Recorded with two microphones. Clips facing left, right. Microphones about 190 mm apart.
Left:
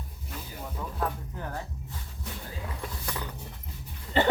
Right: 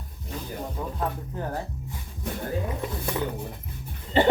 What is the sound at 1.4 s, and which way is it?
Speech, 35° right (ahead or behind).